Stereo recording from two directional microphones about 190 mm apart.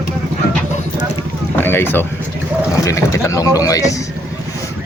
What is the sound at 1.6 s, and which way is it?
Speech, 10° left (ahead or behind).